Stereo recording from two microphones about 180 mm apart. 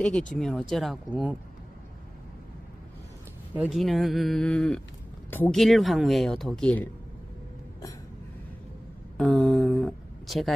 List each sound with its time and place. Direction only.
0.3 s speech: 5° left (ahead or behind)
3.5 s speech: 5° right (ahead or behind)
9.1 s a sound: centre (ahead or behind)